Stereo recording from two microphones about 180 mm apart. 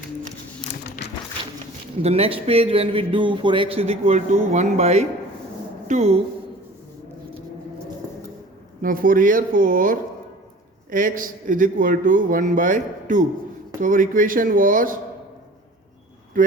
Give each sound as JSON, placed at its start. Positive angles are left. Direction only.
{"t": 2.0, "sound": "a man's voice", "side_deg": -35}
{"t": 8.8, "sound": "speech", "side_deg": -50}